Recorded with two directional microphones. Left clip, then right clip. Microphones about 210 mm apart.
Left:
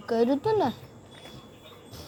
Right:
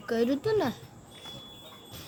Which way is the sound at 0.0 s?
Centre (ahead or behind).